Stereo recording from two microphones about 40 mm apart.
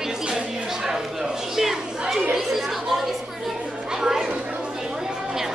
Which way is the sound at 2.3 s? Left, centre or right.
Centre.